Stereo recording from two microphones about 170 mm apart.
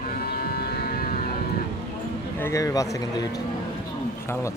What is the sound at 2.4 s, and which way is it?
Speech, 15° left (ahead or behind).